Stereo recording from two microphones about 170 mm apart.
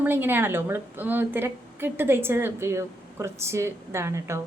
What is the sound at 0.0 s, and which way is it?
A woman's voice, 10° right (ahead or behind).